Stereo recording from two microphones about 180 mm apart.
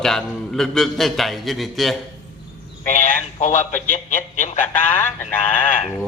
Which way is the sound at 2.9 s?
45° left (ahead or behind).